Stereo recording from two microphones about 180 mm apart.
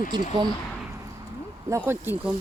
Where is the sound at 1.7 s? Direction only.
15° right (ahead or behind).